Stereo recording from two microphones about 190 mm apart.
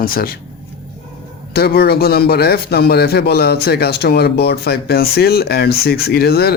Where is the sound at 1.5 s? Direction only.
55° left (ahead or behind).